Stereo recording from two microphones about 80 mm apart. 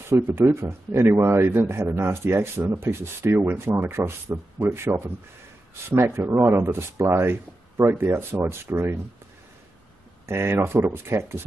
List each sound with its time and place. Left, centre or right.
0.3 s a man's voice: right
10.2 s a man's voice: right